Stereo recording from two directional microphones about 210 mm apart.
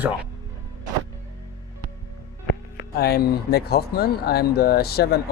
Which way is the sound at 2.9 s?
45° left (ahead or behind).